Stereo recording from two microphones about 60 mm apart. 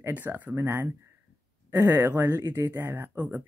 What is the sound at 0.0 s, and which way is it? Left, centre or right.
Speech, right.